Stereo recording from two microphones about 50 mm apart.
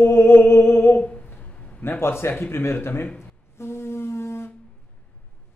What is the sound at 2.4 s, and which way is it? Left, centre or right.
Speech, left.